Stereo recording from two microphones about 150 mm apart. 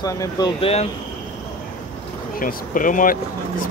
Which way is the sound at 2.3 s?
65° left (ahead or behind).